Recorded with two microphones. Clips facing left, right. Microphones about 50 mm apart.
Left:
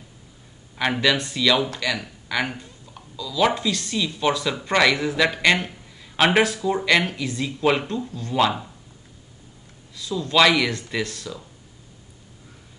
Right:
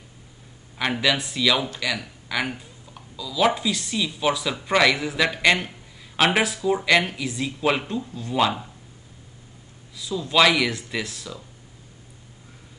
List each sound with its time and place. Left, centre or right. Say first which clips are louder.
1.0 s a man's voice: left 1 dB; centre
9.9 s a man's voice: left 1 dB; centre